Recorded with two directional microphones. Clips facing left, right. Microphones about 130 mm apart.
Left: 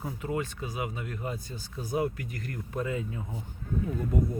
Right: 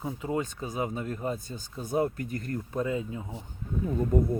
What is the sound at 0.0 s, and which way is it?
Speech, 25° right (ahead or behind).